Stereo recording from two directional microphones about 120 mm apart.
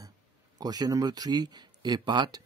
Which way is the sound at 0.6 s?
30° right (ahead or behind).